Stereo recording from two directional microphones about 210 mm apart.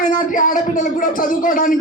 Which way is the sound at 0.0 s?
40° left (ahead or behind).